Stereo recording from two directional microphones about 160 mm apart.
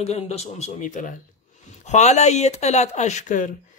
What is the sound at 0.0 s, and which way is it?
Speech, 40° left (ahead or behind).